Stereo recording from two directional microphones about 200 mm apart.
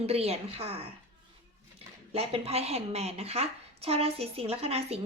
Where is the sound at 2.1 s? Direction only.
30° right (ahead or behind).